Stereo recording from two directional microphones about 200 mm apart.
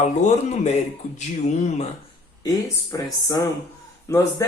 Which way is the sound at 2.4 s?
15° left (ahead or behind).